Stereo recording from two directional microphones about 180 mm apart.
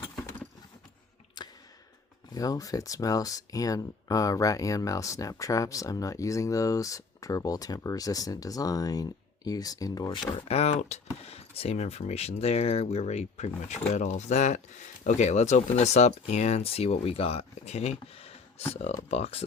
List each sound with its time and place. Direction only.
2.3 s speech: 20° left (ahead or behind)
10.3 s speech: 35° left (ahead or behind)